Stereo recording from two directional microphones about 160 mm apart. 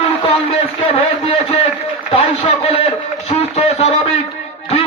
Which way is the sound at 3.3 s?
40° left (ahead or behind).